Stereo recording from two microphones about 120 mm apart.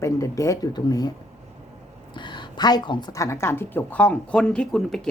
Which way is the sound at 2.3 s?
35° left (ahead or behind).